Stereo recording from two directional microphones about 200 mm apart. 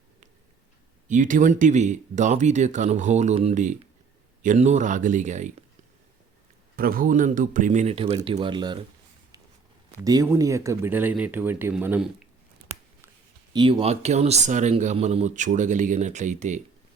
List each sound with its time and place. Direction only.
1.0 s speech: 40° right (ahead or behind)
6.7 s speech: 45° right (ahead or behind); by 8.8 s 25° right (ahead or behind)
10.0 s speech: 15° right (ahead or behind)
13.5 s speech: 25° right (ahead or behind)